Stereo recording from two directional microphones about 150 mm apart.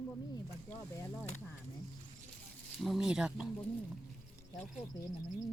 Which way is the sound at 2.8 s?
Centre (ahead or behind).